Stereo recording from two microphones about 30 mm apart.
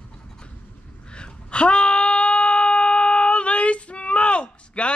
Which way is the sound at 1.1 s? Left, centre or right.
Left.